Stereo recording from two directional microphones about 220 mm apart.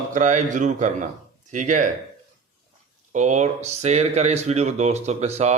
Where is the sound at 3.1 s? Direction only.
35° right (ahead or behind).